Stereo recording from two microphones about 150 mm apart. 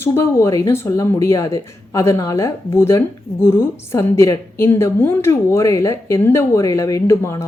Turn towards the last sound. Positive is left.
turn(degrees=15)  # may be behind; listen again after turning